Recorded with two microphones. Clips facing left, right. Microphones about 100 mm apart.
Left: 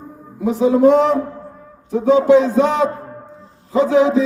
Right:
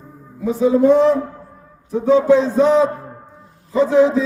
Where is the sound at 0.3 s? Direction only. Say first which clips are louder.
Left 1 dB; 70° left (ahead or behind).